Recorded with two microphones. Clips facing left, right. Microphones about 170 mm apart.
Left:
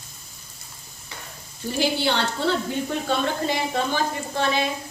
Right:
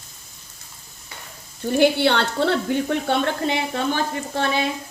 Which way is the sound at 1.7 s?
60° right (ahead or behind).